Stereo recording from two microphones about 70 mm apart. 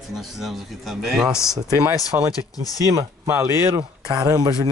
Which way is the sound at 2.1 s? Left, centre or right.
Right.